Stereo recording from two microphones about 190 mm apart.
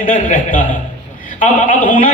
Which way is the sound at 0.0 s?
45° left (ahead or behind).